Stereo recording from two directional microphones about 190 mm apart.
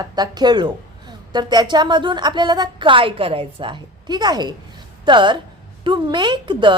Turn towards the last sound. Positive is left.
turn(degrees=-25)  # may be behind; listen again after turning